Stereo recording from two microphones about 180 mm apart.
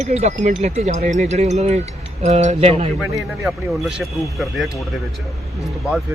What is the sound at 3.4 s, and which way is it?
Speech, 5° right (ahead or behind).